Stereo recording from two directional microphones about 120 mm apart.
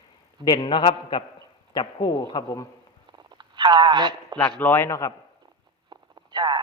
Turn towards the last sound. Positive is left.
turn(degrees=-40)  # may be behind; listen again after turning